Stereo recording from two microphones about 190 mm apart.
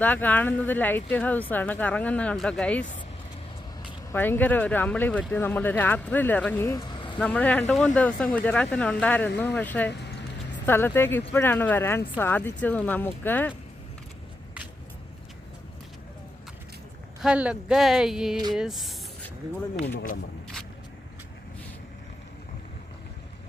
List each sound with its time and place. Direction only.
0.0 s speech: 10° left (ahead or behind)
4.1 s speech: 10° left (ahead or behind)
9.9 s a sound: 65° left (ahead or behind)
10.7 s speech: 10° left (ahead or behind)
17.2 s speech: 5° right (ahead or behind)